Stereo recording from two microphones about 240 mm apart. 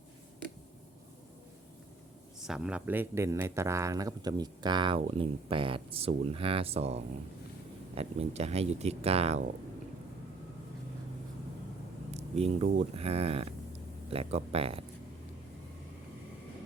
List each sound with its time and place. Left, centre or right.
2.4 s speech: centre; by 9.4 s right
12.1 s a sound: right
13.0 s speech: right